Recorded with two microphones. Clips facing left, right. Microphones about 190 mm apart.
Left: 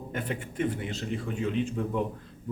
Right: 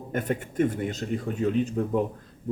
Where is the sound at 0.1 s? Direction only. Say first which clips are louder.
Right 6 dB; 45° right (ahead or behind).